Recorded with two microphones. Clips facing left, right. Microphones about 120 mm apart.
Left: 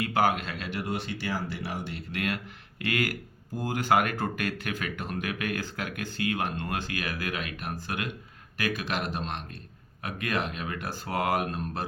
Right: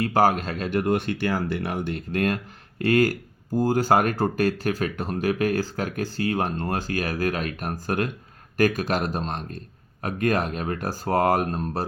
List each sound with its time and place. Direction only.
0.0 s speech: 40° right (ahead or behind)